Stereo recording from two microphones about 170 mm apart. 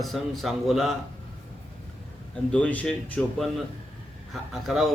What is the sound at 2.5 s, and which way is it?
Speech, 10° left (ahead or behind).